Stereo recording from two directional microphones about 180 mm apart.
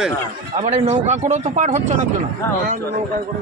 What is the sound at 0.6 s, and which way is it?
Speech, 40° right (ahead or behind).